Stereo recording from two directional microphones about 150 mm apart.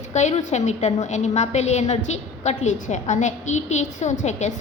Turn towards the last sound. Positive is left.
turn(degrees=50)  # may be behind; listen again after turning